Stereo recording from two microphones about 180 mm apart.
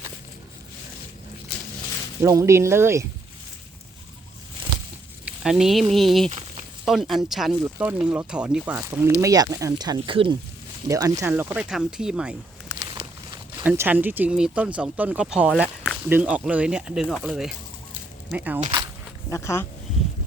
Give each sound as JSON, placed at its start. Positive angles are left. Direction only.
{"t": 2.2, "sound": "speech", "side_deg": -15}
{"t": 5.2, "sound": "sizzle", "side_deg": -5}
{"t": 5.9, "sound": "speech", "side_deg": 0}
{"t": 8.7, "sound": "speech", "side_deg": -15}
{"t": 12.8, "sound": "a sound", "side_deg": -20}
{"t": 13.7, "sound": "speech", "side_deg": -10}
{"t": 19.3, "sound": "speech", "side_deg": 15}